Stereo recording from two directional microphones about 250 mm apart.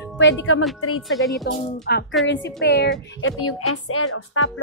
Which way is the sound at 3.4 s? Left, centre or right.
Left.